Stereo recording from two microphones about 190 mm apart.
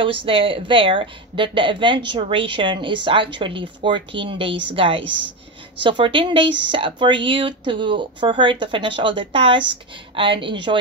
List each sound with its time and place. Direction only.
0.0 s a woman's voice: 30° right (ahead or behind)